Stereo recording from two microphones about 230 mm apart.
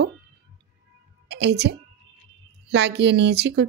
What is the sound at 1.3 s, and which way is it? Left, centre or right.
A woman's voice, right.